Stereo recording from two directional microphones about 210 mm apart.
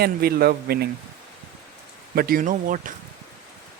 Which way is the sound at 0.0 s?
45° right (ahead or behind).